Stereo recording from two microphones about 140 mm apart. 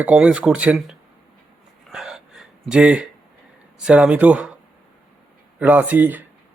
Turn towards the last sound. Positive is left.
turn(degrees=-15)  # may be behind; listen again after turning